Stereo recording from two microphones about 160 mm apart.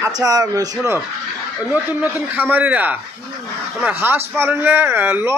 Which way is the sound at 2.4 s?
10° right (ahead or behind).